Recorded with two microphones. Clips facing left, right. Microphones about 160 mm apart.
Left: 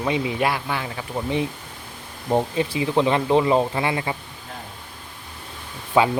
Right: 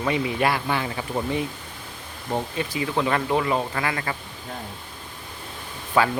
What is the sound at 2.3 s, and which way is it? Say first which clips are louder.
Speech: left 6 dB; 25° left (ahead or behind).